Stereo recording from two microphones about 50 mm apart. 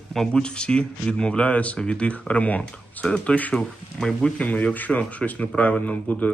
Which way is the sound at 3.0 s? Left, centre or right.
Centre.